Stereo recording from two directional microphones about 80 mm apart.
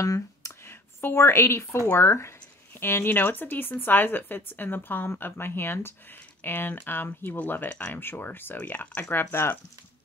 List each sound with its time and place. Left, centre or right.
0.0 s speech: left
0.5 s speech: left
9.1 s speech: left